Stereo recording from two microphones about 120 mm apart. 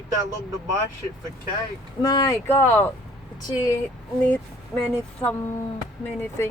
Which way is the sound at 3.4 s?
30° left (ahead or behind).